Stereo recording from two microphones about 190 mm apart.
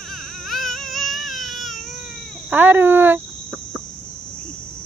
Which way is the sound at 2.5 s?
10° right (ahead or behind).